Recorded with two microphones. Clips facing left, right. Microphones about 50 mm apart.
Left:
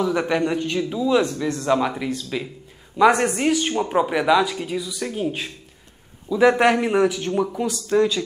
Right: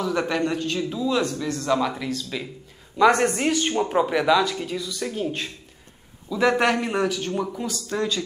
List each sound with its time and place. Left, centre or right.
0.0 s speech: centre
7.5 s speech: left